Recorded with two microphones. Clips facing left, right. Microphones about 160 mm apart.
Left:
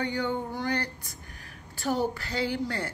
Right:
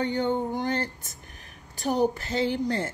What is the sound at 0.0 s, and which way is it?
Speech, 20° right (ahead or behind).